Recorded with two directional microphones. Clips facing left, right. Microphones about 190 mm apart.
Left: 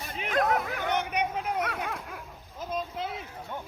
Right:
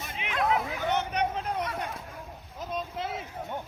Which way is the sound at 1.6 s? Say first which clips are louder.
Left 1 dB; 70° left (ahead or behind).